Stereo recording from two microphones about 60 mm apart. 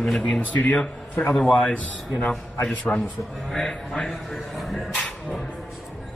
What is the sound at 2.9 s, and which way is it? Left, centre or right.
Speech, left.